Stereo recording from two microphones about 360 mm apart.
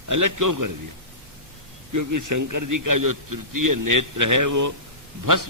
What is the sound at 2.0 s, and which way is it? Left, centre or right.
A man's voice, right.